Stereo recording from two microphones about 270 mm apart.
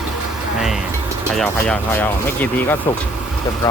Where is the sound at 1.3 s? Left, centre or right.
Centre.